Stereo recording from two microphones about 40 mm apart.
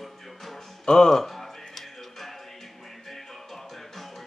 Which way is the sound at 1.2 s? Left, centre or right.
Centre.